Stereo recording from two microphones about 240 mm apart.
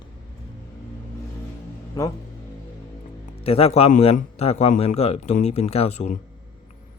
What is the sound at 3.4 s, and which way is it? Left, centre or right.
A man's voice, left.